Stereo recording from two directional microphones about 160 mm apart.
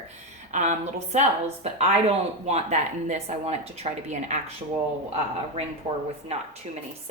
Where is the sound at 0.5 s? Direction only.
50° right (ahead or behind).